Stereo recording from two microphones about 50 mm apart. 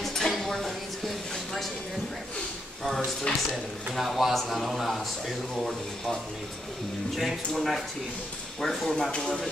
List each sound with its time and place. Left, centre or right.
0.0 s a sound: centre
3.3 s speech: left
3.9 s speech: centre
7.2 s speech: centre